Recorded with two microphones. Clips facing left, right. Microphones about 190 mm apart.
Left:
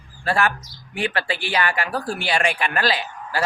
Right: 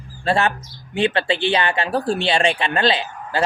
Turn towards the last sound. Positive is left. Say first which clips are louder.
# right 3 dB
turn(degrees=-25)  # may be behind; listen again after turning